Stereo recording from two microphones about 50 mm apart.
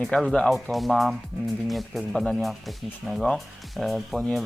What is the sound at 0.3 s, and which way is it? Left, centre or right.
Speech, centre.